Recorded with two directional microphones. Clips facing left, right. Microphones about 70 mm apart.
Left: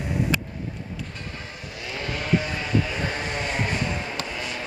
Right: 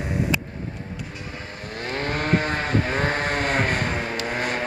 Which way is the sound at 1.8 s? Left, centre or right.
Right.